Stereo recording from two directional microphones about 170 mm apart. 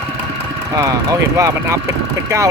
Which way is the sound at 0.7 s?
20° right (ahead or behind).